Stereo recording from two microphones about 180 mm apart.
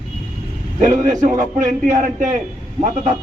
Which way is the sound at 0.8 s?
45° right (ahead or behind).